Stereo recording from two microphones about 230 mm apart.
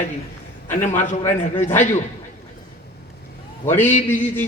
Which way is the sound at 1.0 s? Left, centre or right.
Left.